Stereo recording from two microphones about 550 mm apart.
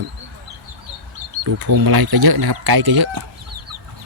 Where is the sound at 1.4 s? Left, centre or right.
Right.